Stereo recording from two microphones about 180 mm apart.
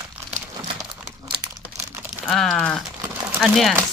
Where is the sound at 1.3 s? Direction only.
20° right (ahead or behind).